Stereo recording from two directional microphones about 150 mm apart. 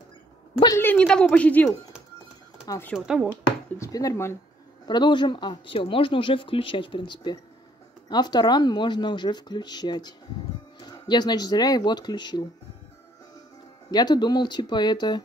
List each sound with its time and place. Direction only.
0.7 s speech: 10° left (ahead or behind)
2.6 s speech: 20° left (ahead or behind)
3.0 s speech: 5° right (ahead or behind)
3.7 s speech: 20° left (ahead or behind)
4.8 s speech: 30° left (ahead or behind)
13.8 s speech: 25° left (ahead or behind)